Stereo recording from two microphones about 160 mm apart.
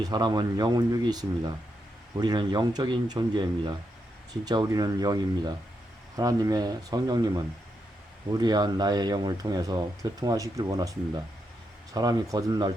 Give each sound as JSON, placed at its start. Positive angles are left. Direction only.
{"t": 0.0, "sound": "speech", "side_deg": -25}
{"t": 11.9, "sound": "speech", "side_deg": -25}